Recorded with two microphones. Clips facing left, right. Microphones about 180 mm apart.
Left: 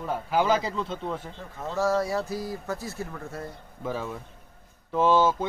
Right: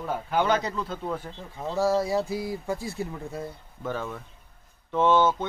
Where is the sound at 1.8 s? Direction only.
15° right (ahead or behind).